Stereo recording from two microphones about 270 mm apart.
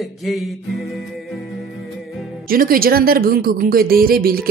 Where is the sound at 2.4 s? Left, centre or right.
Right.